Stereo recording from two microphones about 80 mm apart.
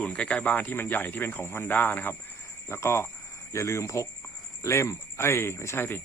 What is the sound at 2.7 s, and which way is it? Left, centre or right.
Speech, left.